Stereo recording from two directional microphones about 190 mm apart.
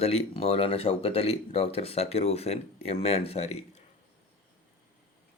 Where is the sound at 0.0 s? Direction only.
35° left (ahead or behind).